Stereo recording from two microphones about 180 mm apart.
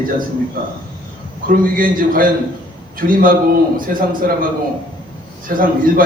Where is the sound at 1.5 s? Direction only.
50° right (ahead or behind).